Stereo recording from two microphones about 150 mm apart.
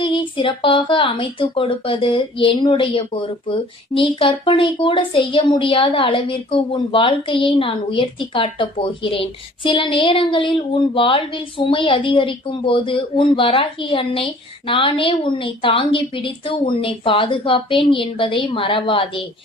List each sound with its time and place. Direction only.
0.0 s speech: 35° left (ahead or behind)